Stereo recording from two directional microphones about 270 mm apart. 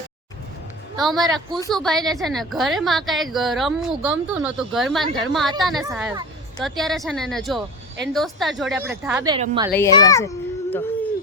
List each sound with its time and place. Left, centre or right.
1.0 s a woman's voice: centre
9.7 s a child's voice: centre